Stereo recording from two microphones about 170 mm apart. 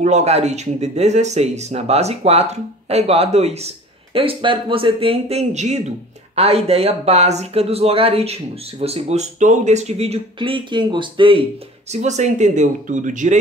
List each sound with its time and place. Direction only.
0.0 s speech: 40° right (ahead or behind)
11.9 s speech: 40° right (ahead or behind)